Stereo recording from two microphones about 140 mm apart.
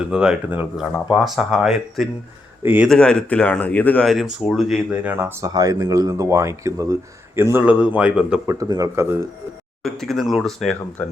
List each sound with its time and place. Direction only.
0.0 s a man's voice: 5° right (ahead or behind)
2.9 s speech: 5° left (ahead or behind)
5.0 s a man's voice: 15° right (ahead or behind)
8.4 s speech: 25° right (ahead or behind)
9.8 s speech: centre (ahead or behind)